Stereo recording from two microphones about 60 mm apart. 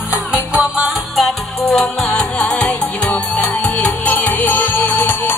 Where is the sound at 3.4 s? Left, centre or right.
Left.